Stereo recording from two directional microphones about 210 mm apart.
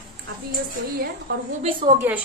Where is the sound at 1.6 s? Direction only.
25° right (ahead or behind).